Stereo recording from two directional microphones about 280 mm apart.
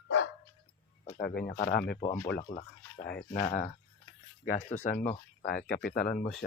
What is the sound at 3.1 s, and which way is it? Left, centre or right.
Speech, left.